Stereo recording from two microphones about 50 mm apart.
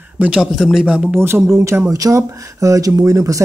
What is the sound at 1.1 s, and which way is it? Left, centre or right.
Speech, right.